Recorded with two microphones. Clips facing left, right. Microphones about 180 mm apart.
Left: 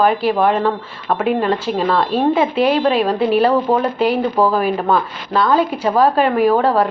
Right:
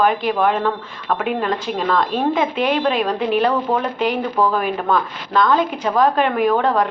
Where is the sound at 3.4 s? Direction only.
10° left (ahead or behind).